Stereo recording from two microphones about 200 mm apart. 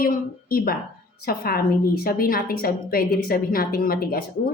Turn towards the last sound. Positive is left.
turn(degrees=50)  # may be behind; listen again after turning